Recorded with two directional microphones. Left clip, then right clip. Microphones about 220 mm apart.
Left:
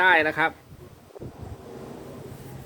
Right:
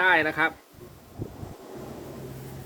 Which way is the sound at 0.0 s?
45° left (ahead or behind).